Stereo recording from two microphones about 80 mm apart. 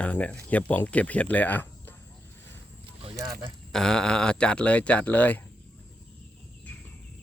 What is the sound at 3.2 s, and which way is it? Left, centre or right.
Speech, right.